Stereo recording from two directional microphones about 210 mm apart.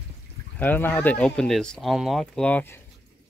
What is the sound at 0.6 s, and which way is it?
Speech, 10° left (ahead or behind).